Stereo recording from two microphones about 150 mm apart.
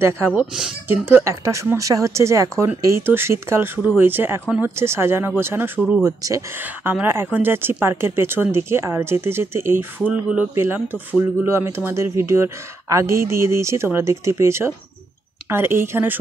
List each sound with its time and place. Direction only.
0.3 s speech: 5° right (ahead or behind)
1.0 s speech: 15° right (ahead or behind)